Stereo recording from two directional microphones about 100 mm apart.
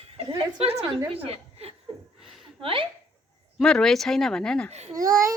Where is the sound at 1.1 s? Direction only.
85° right.